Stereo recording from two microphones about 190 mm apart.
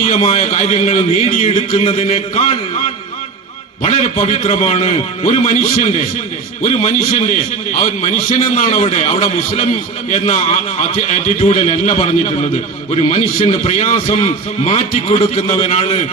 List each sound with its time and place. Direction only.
0.0 s a man's voice: 35° left (ahead or behind)
3.8 s a man's voice: 35° left (ahead or behind)